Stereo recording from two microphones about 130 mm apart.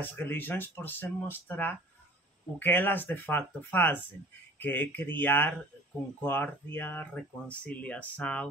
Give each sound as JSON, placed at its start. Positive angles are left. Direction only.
{"t": 0.0, "sound": "speech", "side_deg": 15}